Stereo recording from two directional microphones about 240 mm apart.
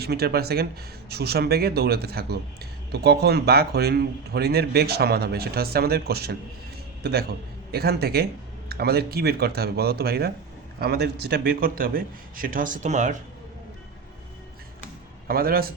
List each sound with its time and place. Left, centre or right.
0.0 s speech: right
15.3 s speech: right